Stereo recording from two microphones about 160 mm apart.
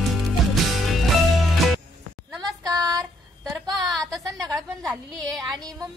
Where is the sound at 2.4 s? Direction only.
20° right (ahead or behind).